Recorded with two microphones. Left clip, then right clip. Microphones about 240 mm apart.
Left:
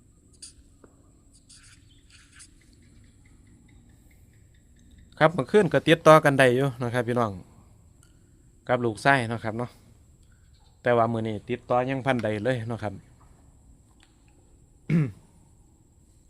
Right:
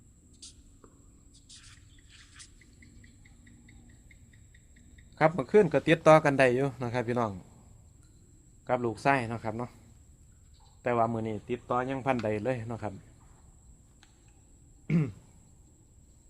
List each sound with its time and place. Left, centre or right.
0.3 s a sound: centre
1.5 s bird: centre
5.1 s speech: left
8.6 s speech: left
10.8 s speech: left
14.8 s throat clearing: left